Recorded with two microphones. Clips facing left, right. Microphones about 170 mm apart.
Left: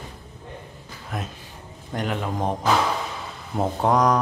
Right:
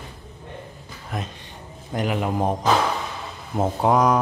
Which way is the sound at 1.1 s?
5° left (ahead or behind).